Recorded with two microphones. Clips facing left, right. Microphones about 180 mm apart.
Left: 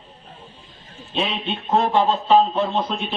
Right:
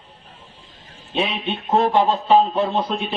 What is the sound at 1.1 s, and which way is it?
A man's voice, 10° right (ahead or behind).